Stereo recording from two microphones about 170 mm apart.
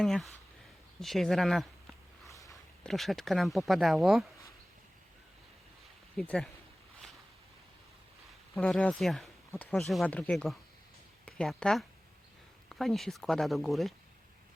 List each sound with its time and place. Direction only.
0.0 s speech: centre (ahead or behind)
2.2 s a sound: 20° left (ahead or behind)
2.8 s speech: centre (ahead or behind)
6.1 s speech: 5° left (ahead or behind)
8.5 s a woman's voice: 5° left (ahead or behind)